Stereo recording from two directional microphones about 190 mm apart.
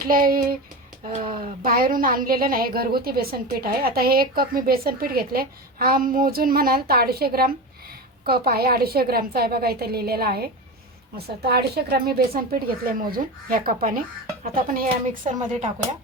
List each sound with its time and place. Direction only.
0.0 s a woman's voice: 50° right (ahead or behind)
1.3 s speech: 30° right (ahead or behind)
1.6 s a woman's voice: 50° right (ahead or behind)